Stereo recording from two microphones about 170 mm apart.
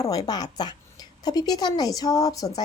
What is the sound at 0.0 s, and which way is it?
A woman's voice, 20° left (ahead or behind).